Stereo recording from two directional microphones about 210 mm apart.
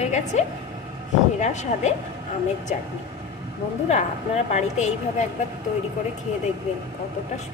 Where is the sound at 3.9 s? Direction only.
35° left (ahead or behind).